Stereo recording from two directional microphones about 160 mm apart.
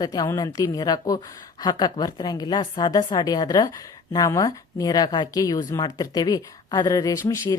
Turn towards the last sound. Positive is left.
turn(degrees=20)  # may be behind; listen again after turning